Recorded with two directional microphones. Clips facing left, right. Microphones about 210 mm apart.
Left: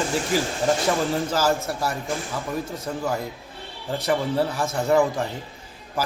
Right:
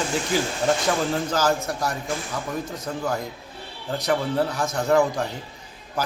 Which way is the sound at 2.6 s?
30° left (ahead or behind).